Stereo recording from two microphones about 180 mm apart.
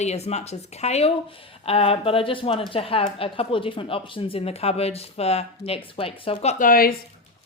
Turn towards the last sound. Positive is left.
turn(degrees=55)  # may be behind; listen again after turning